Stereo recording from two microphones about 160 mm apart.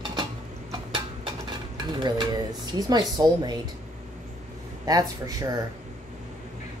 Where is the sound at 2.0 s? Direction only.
25° right (ahead or behind).